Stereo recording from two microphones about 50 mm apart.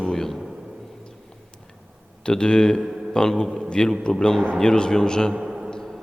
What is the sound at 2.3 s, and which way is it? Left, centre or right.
A man's voice, centre.